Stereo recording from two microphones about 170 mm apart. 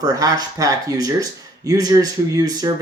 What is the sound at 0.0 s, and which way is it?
Speech, 20° right (ahead or behind).